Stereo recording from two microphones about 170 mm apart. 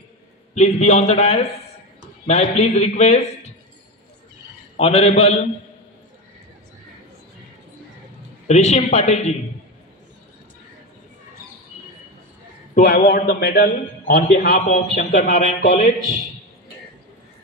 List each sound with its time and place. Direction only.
0.6 s a man's voice: 40° left (ahead or behind)
4.7 s a man's voice: 35° left (ahead or behind)
8.5 s a man's voice: 40° left (ahead or behind)
12.7 s a man's voice: 60° left (ahead or behind)
14.7 s a man's voice: 45° left (ahead or behind)